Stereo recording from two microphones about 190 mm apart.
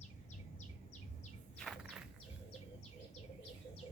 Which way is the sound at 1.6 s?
Centre (ahead or behind).